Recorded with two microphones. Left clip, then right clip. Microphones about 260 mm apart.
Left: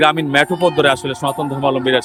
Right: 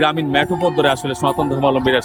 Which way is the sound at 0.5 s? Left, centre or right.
Left.